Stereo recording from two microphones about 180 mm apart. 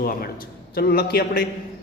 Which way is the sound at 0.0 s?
55° left (ahead or behind).